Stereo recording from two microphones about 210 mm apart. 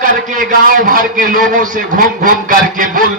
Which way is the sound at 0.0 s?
40° right (ahead or behind).